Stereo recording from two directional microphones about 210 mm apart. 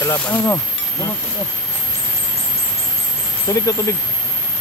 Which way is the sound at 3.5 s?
15° left (ahead or behind).